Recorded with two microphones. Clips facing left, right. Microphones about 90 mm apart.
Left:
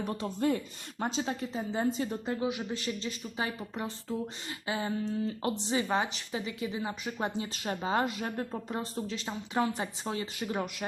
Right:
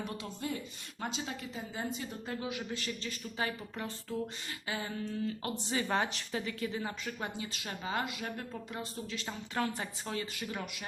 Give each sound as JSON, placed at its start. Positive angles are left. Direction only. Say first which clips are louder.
{"t": 0.0, "sound": "speech", "louder": "left 6 dB", "side_deg": 40}
{"t": 0.4, "sound": "speech", "louder": "left 10 dB", "side_deg": 50}
{"t": 1.0, "sound": "speech", "louder": "left 6 dB", "side_deg": 35}
{"t": 5.9, "sound": "a woman's voice", "louder": "left 2 dB", "side_deg": 5}
{"t": 7.2, "sound": "speech", "louder": "left 6 dB", "side_deg": 30}
{"t": 9.2, "sound": "speech", "louder": "left 4 dB", "side_deg": 20}